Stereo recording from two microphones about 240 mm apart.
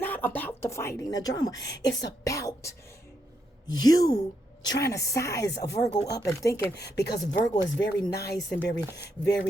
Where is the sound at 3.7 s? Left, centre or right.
Centre.